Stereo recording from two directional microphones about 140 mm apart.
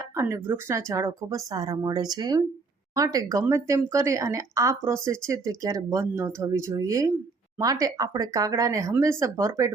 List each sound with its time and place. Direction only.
0.2 s speech: 15° right (ahead or behind)